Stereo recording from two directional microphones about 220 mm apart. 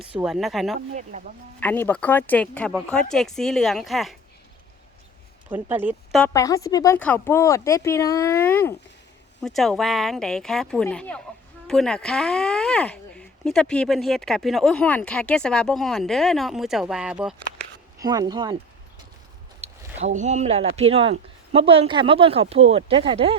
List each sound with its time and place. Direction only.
0.1 s speech: 5° right (ahead or behind)
0.9 s speech: 35° right (ahead or behind)
1.5 s speech: 10° left (ahead or behind)
5.5 s speech: 10° right (ahead or behind)
6.1 s speech: 10° left (ahead or behind)
18.0 s speech: 15° right (ahead or behind)
19.6 s a sound: 30° right (ahead or behind)
20.0 s speech: 30° right (ahead or behind)